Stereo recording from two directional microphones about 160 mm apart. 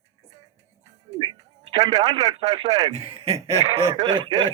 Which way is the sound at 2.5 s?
25° right (ahead or behind).